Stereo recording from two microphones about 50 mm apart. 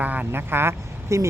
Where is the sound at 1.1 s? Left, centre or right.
Right.